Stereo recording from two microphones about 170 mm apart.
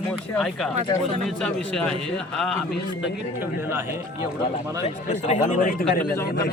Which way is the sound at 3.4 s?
15° right (ahead or behind).